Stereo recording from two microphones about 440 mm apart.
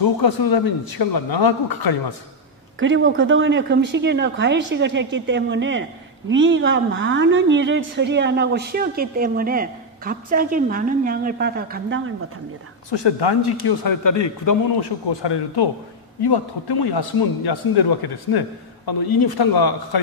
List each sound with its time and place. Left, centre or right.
0.2 s speech: left
2.8 s speech: right
12.9 s a man's voice: left
15.0 s a man's voice: left